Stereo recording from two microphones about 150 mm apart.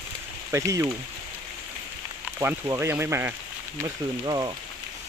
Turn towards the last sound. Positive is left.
turn(degrees=-25)  # may be behind; listen again after turning